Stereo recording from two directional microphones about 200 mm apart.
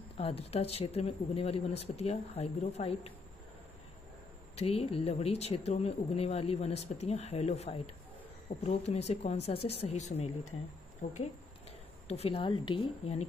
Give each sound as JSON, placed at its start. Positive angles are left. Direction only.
{"t": 0.2, "sound": "speech", "side_deg": 30}
{"t": 4.6, "sound": "speech", "side_deg": 30}
{"t": 12.1, "sound": "speech", "side_deg": 30}